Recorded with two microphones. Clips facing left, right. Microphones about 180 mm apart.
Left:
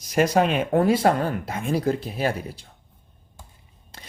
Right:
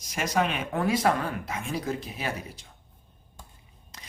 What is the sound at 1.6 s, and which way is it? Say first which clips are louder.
Speech: left 11 dB; 55° left (ahead or behind).